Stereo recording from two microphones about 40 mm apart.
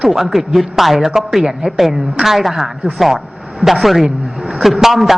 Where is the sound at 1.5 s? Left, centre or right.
Centre.